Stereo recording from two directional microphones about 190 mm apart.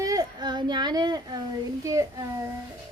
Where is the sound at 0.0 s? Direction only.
20° right (ahead or behind).